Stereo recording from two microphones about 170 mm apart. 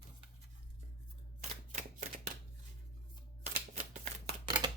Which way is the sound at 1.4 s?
40° right (ahead or behind).